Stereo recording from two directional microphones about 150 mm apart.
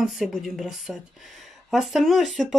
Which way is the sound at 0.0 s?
Centre (ahead or behind).